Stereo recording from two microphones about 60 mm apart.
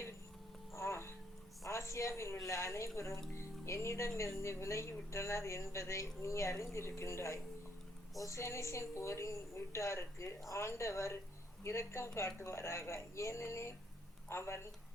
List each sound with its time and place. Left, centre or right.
0.7 s music: left
1.6 s a sound: left
2.4 s a woman's voice: left
3.3 s music: left
4.2 s a woman's voice: left